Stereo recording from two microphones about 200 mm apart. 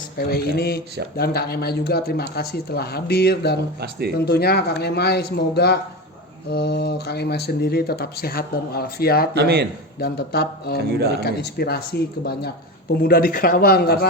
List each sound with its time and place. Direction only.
0.2 s speech: 50° left (ahead or behind)
9.3 s a man's voice: 55° right (ahead or behind)
10.0 s speech: 55° left (ahead or behind)